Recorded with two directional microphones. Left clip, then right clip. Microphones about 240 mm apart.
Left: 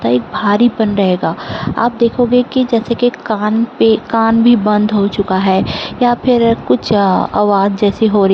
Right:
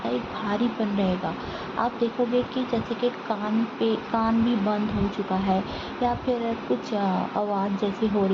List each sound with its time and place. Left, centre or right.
0.0 s speech: left